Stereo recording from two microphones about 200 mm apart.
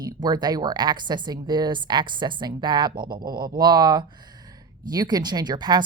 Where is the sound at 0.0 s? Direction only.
20° right (ahead or behind).